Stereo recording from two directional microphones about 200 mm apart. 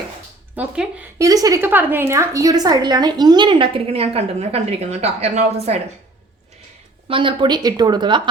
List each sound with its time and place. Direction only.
0.5 s a woman's voice: 5° right (ahead or behind)
1.3 s a woman's voice: 15° right (ahead or behind)
7.1 s a woman's voice: 25° right (ahead or behind)